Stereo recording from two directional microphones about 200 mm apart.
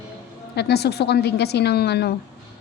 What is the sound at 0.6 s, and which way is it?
A woman's voice, 55° left (ahead or behind).